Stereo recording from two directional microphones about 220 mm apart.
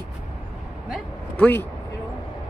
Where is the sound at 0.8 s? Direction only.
5° left (ahead or behind).